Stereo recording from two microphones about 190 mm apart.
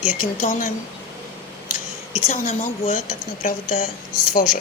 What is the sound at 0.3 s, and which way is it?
Speech, 45° left (ahead or behind).